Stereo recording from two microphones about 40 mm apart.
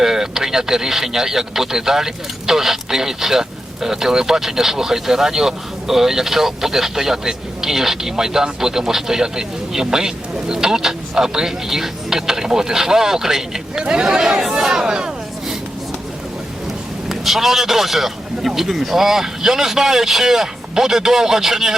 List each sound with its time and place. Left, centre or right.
0.0 s speech: centre
17.1 s speech: centre